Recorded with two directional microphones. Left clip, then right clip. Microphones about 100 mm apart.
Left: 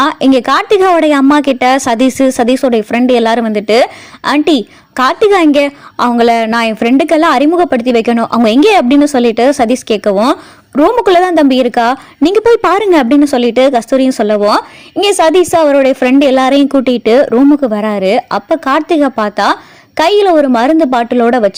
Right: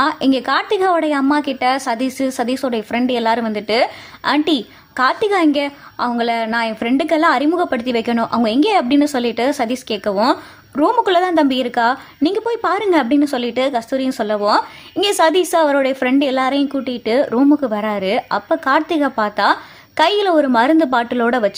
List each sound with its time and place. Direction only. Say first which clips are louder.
0.0 s a woman's voice: left 7 dB; 70° left (ahead or behind)
15.0 s a woman's voice: left 6 dB; 55° left (ahead or behind)